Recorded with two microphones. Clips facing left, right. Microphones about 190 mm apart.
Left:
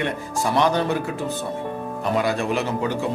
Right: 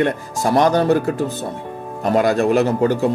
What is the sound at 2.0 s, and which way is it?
Speech, 45° right (ahead or behind).